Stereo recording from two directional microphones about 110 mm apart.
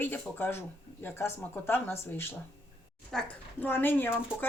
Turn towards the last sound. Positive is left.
turn(degrees=15)  # may be behind; listen again after turning